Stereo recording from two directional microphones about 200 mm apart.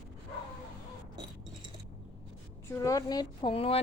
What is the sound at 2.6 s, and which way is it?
Speech, 15° left (ahead or behind).